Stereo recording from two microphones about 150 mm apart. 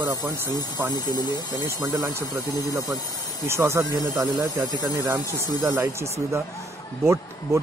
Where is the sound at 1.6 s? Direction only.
25° right (ahead or behind).